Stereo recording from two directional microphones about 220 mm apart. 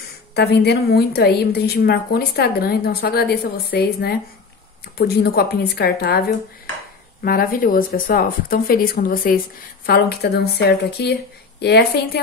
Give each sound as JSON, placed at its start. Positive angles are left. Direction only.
{"t": 0.3, "sound": "a woman's voice", "side_deg": 50}